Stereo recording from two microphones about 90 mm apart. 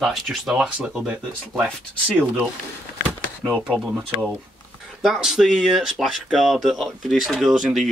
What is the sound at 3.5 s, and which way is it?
Speech, 15° right (ahead or behind).